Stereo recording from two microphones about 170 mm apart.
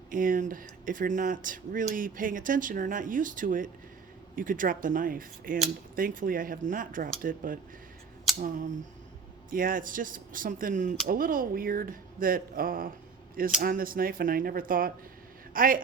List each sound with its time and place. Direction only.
0.1 s speech: 55° right (ahead or behind)